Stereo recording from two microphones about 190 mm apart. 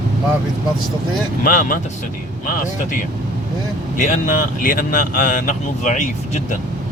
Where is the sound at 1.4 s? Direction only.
45° left (ahead or behind).